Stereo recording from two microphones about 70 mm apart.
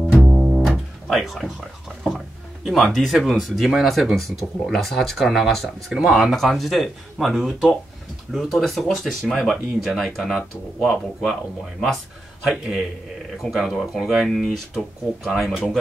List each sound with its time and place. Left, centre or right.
0.2 s music: centre
2.0 s speech: centre
12.4 s speech: centre